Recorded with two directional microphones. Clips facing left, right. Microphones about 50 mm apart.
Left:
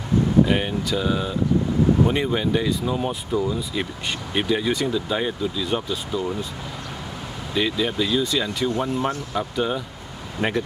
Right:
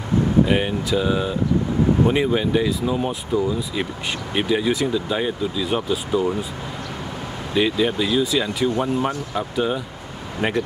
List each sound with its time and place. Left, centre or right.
0.5 s speech: centre
7.5 s speech: centre
10.4 s speech: centre